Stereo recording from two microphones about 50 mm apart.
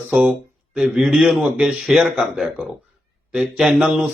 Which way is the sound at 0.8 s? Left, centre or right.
Centre.